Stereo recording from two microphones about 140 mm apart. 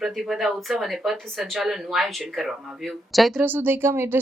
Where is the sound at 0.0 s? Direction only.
Centre (ahead or behind).